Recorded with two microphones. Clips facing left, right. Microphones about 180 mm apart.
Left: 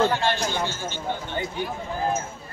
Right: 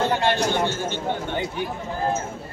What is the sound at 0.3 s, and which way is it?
Speech, 55° right (ahead or behind).